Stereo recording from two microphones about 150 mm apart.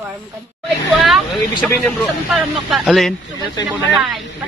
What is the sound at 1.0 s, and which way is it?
Speech, 5° left (ahead or behind).